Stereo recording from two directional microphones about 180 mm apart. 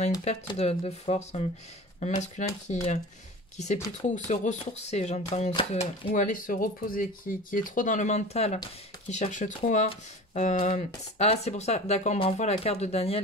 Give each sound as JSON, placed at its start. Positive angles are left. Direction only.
{"t": 0.5, "sound": "speech", "side_deg": 35}